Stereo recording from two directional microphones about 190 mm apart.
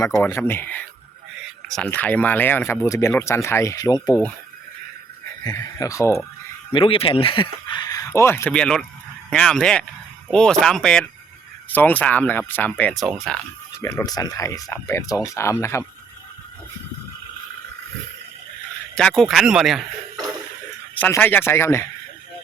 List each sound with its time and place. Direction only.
0.2 s speech: 15° left (ahead or behind)
5.4 s speech: 20° left (ahead or behind)
6.7 s speech: 30° left (ahead or behind); by 13.4 s centre (ahead or behind)
13.8 s speech: 20° left (ahead or behind)
18.9 s speech: 5° left (ahead or behind)
20.9 s speech: 10° left (ahead or behind)